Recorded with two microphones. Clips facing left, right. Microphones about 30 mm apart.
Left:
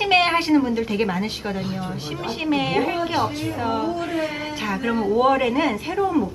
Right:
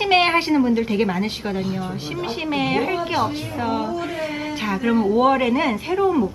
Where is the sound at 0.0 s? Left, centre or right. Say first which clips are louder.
Right 1 dB; centre.